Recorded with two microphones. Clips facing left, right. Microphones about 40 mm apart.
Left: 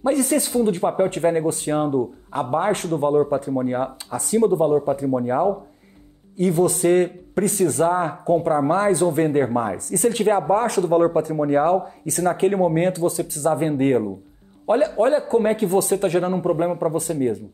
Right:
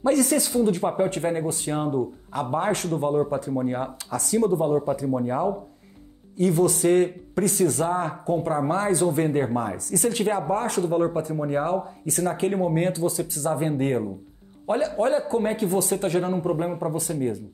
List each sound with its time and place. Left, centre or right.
0.0 s speech: left
3.6 s speech: left
6.3 s speech: left